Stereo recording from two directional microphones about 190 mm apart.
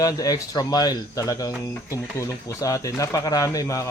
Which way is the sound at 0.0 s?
20° left (ahead or behind).